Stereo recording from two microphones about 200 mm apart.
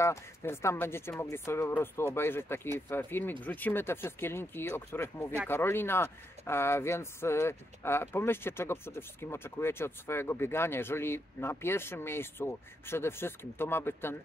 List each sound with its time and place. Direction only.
0.0 s speech: 15° left (ahead or behind)